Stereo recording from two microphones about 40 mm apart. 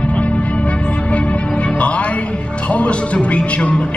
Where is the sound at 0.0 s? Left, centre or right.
Left.